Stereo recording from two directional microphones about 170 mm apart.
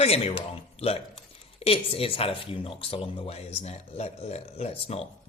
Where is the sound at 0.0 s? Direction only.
35° left (ahead or behind).